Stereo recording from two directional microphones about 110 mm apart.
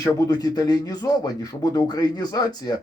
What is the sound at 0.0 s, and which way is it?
Speech, 35° left (ahead or behind).